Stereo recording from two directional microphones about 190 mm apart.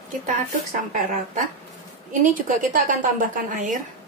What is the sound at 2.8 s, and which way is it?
A woman's voice, 45° right (ahead or behind).